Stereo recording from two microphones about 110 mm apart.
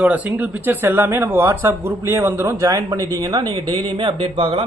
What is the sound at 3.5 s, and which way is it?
A man's voice, 50° right (ahead or behind).